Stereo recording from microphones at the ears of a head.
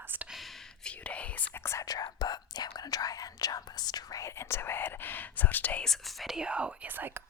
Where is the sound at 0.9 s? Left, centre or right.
Left.